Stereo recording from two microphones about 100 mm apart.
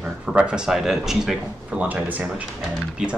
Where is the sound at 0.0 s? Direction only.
10° right (ahead or behind).